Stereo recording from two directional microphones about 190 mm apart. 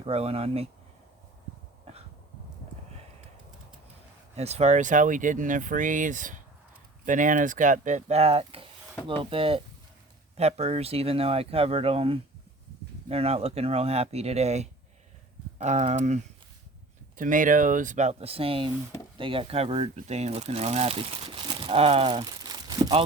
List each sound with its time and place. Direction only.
0.0 s speech: 30° right (ahead or behind)
4.4 s speech: 35° right (ahead or behind)